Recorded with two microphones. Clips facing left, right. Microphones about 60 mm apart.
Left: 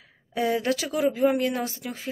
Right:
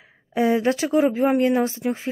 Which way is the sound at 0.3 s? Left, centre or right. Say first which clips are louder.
Right 5 dB; right.